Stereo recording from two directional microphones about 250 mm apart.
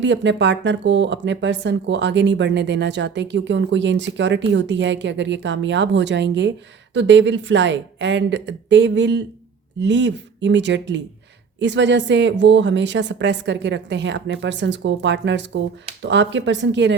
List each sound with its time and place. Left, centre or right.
0.0 s speech: right